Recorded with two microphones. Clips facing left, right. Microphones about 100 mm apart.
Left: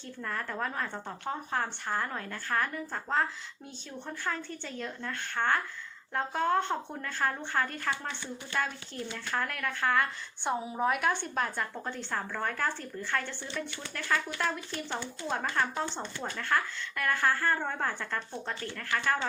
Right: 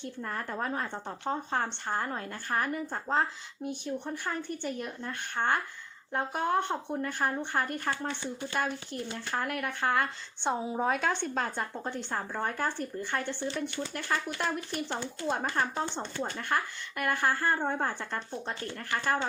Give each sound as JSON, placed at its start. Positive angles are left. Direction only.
{"t": 0.2, "sound": "speech", "side_deg": -25}